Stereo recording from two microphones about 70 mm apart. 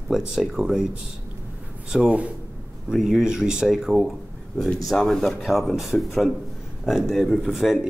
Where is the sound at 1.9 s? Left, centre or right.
Centre.